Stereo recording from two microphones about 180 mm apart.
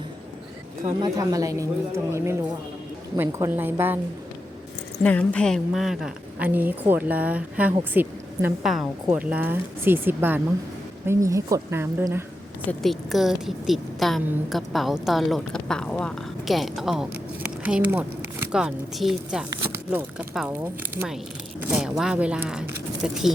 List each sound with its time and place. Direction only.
0.9 s speech: 25° right (ahead or behind)
3.2 s a woman's voice: 15° right (ahead or behind)
5.0 s a woman's voice: 5° left (ahead or behind); by 12.2 s 15° right (ahead or behind)
12.6 s a woman's voice: centre (ahead or behind)